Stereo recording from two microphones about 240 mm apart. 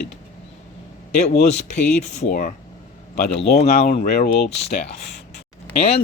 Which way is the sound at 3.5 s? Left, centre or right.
Left.